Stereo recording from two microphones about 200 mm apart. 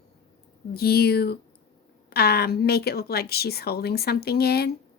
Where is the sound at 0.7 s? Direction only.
50° left (ahead or behind).